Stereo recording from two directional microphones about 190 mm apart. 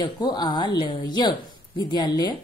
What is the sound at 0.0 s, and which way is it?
A woman's voice, 20° left (ahead or behind).